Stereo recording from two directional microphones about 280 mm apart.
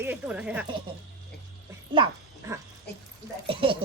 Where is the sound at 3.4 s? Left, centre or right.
Centre.